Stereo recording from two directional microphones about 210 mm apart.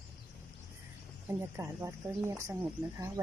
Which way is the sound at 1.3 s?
10° right (ahead or behind).